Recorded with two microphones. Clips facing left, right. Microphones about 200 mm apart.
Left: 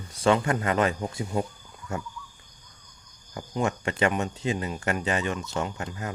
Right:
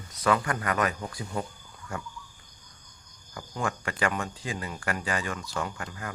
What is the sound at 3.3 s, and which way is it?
Speech, 25° left (ahead or behind).